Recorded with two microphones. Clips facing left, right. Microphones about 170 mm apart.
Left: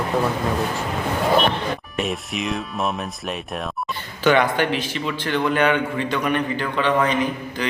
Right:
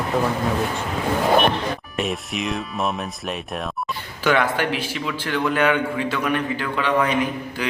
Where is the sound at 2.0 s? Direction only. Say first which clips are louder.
Right 1 dB; centre (ahead or behind).